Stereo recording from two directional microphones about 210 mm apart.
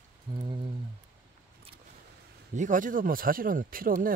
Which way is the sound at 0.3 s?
20° right (ahead or behind).